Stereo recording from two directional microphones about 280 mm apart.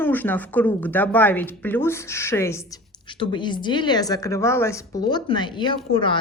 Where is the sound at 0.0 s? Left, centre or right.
Centre.